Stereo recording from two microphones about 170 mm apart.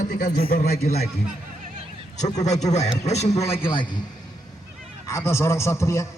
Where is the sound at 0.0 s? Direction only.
50° left (ahead or behind); by 1.1 s 65° left (ahead or behind).